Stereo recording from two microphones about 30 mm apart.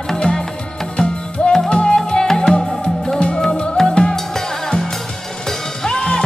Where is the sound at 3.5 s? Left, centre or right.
Left.